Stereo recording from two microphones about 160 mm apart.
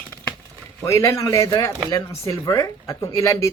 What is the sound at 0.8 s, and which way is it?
Speech, 20° left (ahead or behind).